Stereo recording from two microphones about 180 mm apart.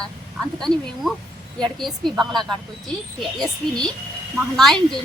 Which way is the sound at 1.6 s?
Centre (ahead or behind).